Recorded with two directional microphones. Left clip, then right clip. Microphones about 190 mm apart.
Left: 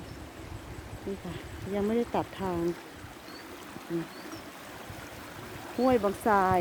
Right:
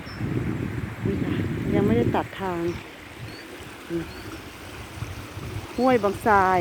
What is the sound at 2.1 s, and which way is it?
Speech, 5° left (ahead or behind).